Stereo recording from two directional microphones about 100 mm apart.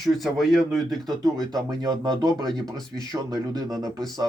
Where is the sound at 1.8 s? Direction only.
40° right (ahead or behind).